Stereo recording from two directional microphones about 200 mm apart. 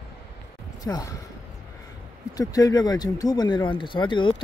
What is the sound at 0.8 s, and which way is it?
Speech, 20° left (ahead or behind).